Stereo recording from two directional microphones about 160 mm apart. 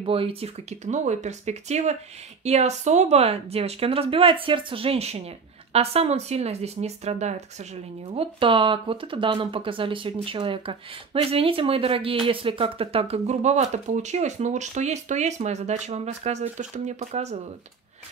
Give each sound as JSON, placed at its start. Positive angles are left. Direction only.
{"t": 0.0, "sound": "speech", "side_deg": -35}